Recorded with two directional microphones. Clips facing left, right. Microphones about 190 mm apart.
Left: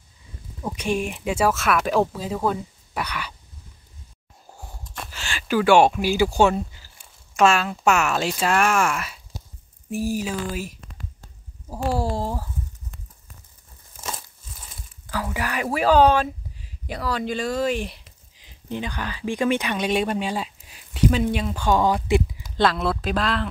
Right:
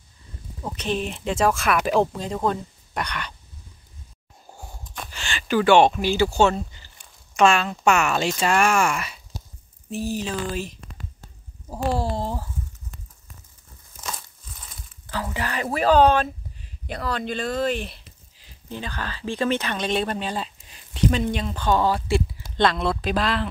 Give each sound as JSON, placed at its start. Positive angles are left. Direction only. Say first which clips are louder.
{"t": 0.7, "sound": "speech", "louder": "left 2 dB", "side_deg": 10}
{"t": 4.6, "sound": "speech", "louder": "even", "side_deg": 0}
{"t": 14.0, "sound": "crumpling", "louder": "left 1 dB", "side_deg": 25}
{"t": 14.8, "sound": "speech", "louder": "left 1 dB", "side_deg": 5}
{"t": 22.6, "sound": "speech", "louder": "even", "side_deg": 5}